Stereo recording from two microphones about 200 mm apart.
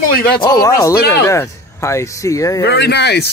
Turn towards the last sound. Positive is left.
turn(degrees=55)  # may be behind; listen again after turning